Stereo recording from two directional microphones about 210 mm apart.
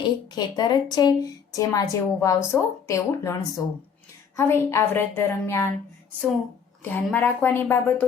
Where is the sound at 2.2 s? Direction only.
15° left (ahead or behind).